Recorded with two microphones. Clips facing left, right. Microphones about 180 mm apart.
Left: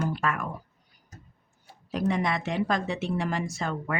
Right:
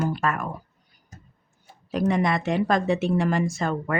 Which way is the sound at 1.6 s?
50° right (ahead or behind).